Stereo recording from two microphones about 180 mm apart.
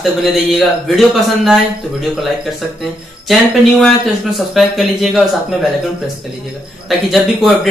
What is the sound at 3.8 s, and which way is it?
Speech, centre (ahead or behind).